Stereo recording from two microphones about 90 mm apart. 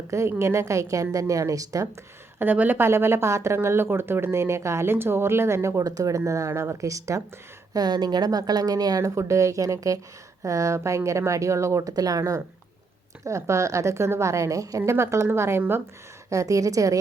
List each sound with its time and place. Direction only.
0.1 s a woman's voice: 30° right (ahead or behind)
2.4 s a woman's voice: 20° right (ahead or behind); by 7.2 s 35° right (ahead or behind)
7.7 s a woman's voice: 50° right (ahead or behind)